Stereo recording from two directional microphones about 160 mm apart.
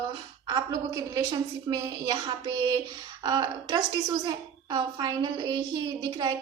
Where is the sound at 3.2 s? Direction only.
25° right (ahead or behind).